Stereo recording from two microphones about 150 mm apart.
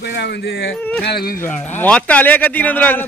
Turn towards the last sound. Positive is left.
turn(degrees=10)  # may be behind; listen again after turning